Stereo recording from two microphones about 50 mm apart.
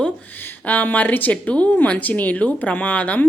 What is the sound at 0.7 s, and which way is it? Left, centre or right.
A woman's voice, left.